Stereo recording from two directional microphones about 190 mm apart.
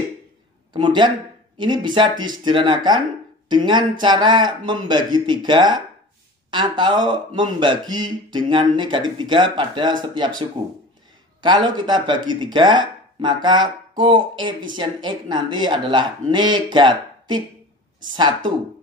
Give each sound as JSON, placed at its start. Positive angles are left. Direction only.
{"t": 0.7, "sound": "speech", "side_deg": -25}
{"t": 11.4, "sound": "speech", "side_deg": -25}